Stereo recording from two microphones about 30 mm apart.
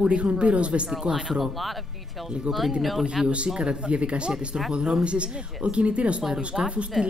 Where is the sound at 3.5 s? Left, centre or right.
Right.